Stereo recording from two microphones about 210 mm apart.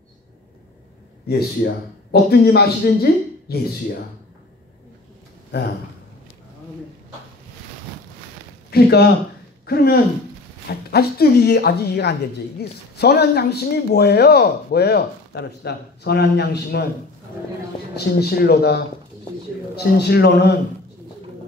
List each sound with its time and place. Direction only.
2.3 s speech: 50° left (ahead or behind)
5.5 s speech: 50° left (ahead or behind)
8.6 s a man's voice: 50° left (ahead or behind)
17.9 s speech: 50° left (ahead or behind)